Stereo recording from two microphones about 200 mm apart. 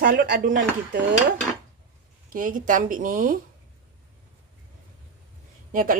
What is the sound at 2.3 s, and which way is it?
A woman's voice, 40° right (ahead or behind).